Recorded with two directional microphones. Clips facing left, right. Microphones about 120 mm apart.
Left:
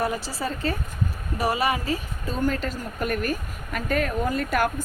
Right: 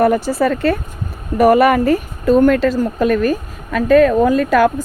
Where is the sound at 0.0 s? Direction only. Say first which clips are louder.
Right 13 dB; 55° right (ahead or behind).